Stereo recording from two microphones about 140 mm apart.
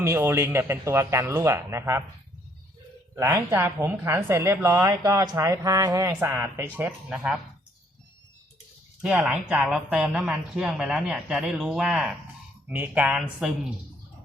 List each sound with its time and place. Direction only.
0.0 s a woman's voice: 20° right (ahead or behind)
3.2 s a woman's voice: 20° right (ahead or behind)
9.2 s speech: 5° right (ahead or behind)